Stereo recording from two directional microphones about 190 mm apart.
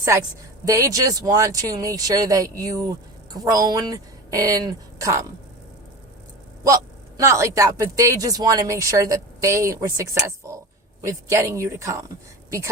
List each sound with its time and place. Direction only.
0.6 s a woman's voice: 15° right (ahead or behind)
7.2 s speech: 15° right (ahead or behind)